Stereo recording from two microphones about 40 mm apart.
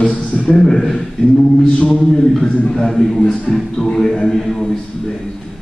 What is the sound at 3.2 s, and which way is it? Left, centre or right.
Speech, left.